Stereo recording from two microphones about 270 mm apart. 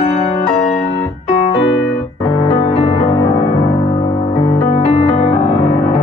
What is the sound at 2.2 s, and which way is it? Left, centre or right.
Music, left.